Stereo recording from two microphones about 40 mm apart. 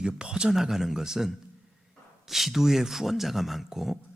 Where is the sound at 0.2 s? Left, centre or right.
Centre.